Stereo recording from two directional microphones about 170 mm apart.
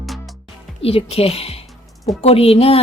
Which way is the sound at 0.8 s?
35° left (ahead or behind).